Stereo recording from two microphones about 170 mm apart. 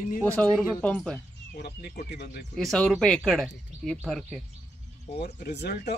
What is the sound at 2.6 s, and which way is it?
Speech, 5° left (ahead or behind).